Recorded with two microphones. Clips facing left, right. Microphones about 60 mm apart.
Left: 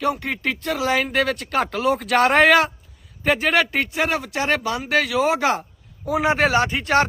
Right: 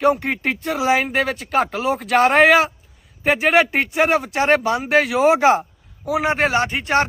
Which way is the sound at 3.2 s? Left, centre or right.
Centre.